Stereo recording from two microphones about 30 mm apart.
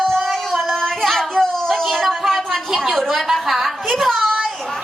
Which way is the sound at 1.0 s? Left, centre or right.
Centre.